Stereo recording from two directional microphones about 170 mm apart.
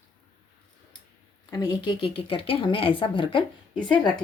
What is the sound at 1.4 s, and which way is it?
Speech, 25° left (ahead or behind).